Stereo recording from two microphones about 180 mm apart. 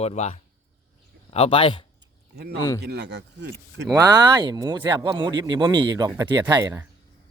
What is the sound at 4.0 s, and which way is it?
Speech, 20° right (ahead or behind).